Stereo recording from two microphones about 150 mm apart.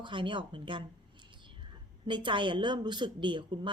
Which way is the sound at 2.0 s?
30° right (ahead or behind).